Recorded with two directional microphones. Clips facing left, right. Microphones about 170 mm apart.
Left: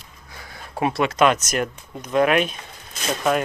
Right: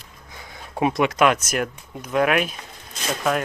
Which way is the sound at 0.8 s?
15° right (ahead or behind).